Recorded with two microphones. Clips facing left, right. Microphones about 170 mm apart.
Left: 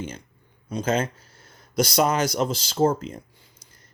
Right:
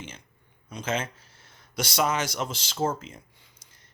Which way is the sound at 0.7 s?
35° left (ahead or behind).